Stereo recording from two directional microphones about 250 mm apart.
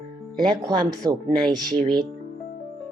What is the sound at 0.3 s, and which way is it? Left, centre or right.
Speech, centre.